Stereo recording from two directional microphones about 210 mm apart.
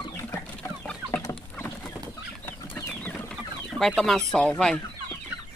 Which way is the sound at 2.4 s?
10° left (ahead or behind).